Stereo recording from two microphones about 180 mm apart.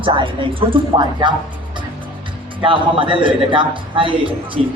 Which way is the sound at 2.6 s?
30° right (ahead or behind).